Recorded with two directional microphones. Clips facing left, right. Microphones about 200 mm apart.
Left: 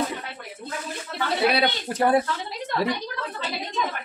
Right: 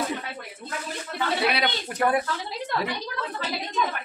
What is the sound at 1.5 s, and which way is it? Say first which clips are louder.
Speech: left 4 dB; 30° left (ahead or behind).